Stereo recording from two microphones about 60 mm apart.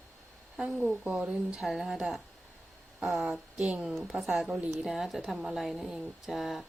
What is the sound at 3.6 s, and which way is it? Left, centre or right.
Speech, centre.